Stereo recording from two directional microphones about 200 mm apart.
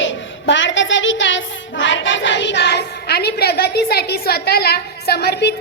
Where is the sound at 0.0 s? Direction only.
65° left (ahead or behind).